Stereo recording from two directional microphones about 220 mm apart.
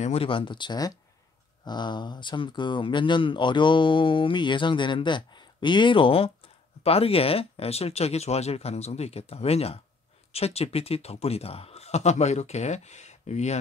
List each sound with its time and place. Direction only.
0.0 s speech: 25° left (ahead or behind)